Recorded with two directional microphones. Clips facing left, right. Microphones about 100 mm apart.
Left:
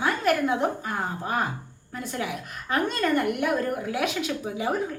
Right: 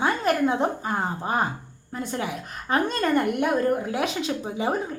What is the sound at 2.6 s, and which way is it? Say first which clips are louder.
A woman's voice: right 2 dB; 30° right (ahead or behind).